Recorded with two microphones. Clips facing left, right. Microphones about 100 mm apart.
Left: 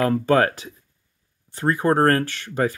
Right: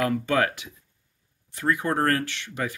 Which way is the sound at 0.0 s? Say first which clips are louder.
Left 5 dB; 35° left (ahead or behind).